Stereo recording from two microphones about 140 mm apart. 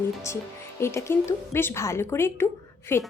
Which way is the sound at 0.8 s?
20° left (ahead or behind).